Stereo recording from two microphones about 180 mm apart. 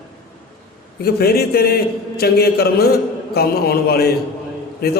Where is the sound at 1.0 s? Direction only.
60° left (ahead or behind).